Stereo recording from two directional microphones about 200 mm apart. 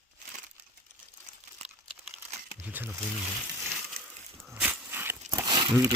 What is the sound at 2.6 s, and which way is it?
Speech, 10° right (ahead or behind).